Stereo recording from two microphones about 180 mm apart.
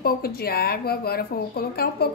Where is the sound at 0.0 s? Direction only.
55° left (ahead or behind).